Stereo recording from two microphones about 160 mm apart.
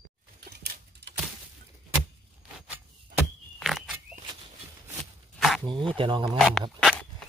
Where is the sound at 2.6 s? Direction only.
10° right (ahead or behind).